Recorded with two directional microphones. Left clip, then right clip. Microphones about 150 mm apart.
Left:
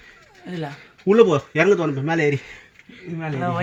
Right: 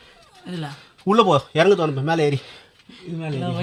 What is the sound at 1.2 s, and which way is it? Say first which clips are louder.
Speech: even; 30° right (ahead or behind).